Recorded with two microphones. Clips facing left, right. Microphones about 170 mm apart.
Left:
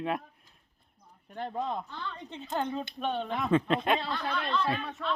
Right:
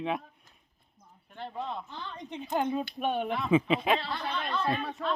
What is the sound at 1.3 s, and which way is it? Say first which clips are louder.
Speech: left 3 dB; 45° left (ahead or behind).